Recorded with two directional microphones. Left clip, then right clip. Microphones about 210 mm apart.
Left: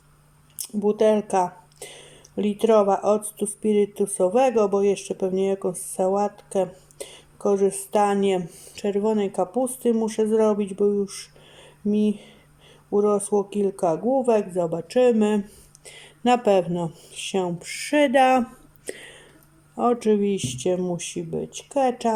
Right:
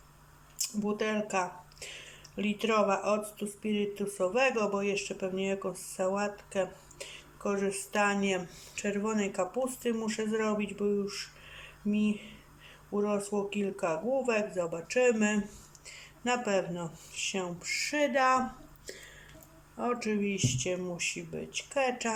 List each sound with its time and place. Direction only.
0.6 s speech: 35° left (ahead or behind)
18.9 s a sound: 35° left (ahead or behind)
19.7 s speech: 30° left (ahead or behind)